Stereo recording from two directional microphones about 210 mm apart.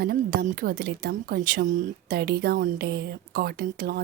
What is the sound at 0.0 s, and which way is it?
A woman's voice, 45° right (ahead or behind).